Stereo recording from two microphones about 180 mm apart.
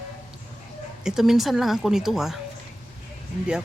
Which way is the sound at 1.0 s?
Centre (ahead or behind).